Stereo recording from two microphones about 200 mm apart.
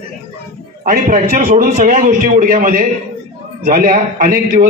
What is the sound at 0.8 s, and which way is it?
A man's voice, 45° right (ahead or behind).